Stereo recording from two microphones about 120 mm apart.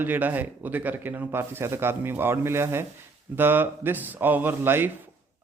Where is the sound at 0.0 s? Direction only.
15° right (ahead or behind).